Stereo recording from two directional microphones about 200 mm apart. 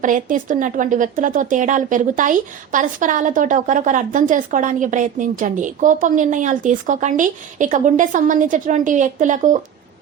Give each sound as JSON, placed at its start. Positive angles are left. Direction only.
{"t": 0.0, "sound": "speech", "side_deg": -40}